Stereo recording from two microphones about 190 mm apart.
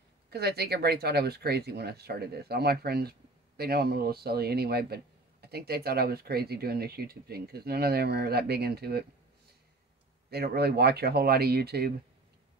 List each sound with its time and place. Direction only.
0.3 s speech: 55° right (ahead or behind)
10.3 s speech: 55° right (ahead or behind)